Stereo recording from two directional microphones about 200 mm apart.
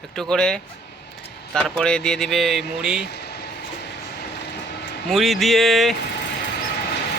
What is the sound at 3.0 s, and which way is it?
Vehicle, 55° left (ahead or behind).